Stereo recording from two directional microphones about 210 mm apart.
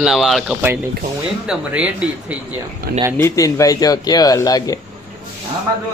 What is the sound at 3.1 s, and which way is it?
Speech, 15° left (ahead or behind).